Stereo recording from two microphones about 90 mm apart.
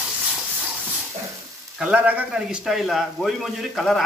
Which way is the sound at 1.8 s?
15° right (ahead or behind).